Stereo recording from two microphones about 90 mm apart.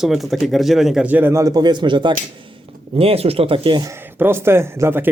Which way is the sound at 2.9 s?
90° right.